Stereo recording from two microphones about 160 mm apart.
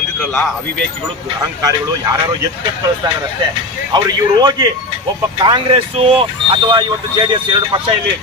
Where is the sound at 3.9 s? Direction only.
25° right (ahead or behind).